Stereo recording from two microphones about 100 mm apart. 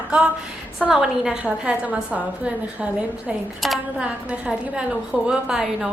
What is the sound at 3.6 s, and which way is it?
A woman's voice, centre (ahead or behind).